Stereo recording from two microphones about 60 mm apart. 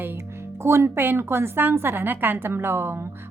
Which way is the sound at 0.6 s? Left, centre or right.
Right.